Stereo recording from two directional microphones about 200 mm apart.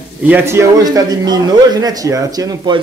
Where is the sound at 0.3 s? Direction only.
15° right (ahead or behind).